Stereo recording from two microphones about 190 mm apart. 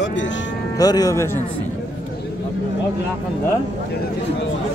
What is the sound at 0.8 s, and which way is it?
Speech, 20° left (ahead or behind).